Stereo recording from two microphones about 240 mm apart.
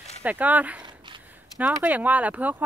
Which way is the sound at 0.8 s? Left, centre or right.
Centre.